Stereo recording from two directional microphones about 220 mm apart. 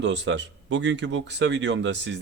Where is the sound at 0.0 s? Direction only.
55° right (ahead or behind).